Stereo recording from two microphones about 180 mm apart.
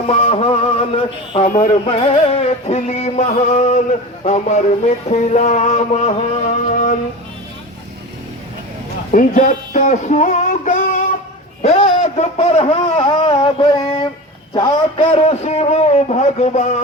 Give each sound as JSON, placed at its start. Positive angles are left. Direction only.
{"t": 0.1, "sound": "music", "side_deg": 35}
{"t": 9.1, "sound": "a sound", "side_deg": 45}
{"t": 11.6, "sound": "music", "side_deg": 35}
{"t": 14.5, "sound": "a man's voice", "side_deg": 20}
{"t": 15.3, "sound": "music", "side_deg": 35}